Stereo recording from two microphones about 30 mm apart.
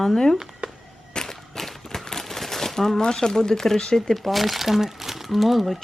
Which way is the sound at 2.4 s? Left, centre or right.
Centre.